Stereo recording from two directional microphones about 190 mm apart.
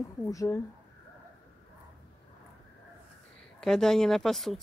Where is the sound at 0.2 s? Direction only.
15° left (ahead or behind).